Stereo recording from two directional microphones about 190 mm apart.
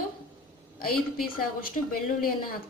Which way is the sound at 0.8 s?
50° left (ahead or behind).